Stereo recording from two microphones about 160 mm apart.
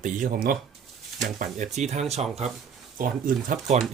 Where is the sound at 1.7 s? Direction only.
45° right (ahead or behind).